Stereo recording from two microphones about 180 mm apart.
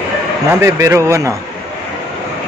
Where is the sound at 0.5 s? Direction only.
15° right (ahead or behind).